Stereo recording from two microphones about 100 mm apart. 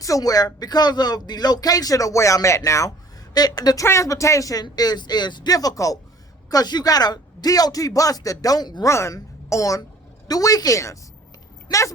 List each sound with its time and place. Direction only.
0.0 s speech: 35° left (ahead or behind)
3.8 s speech: 30° left (ahead or behind)
8.8 s speech: 30° left (ahead or behind)